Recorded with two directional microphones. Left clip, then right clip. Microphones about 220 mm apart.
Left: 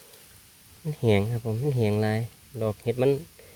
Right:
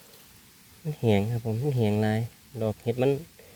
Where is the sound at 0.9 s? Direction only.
5° left (ahead or behind).